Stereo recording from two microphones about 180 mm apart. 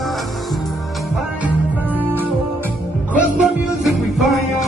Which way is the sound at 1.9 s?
10° right (ahead or behind).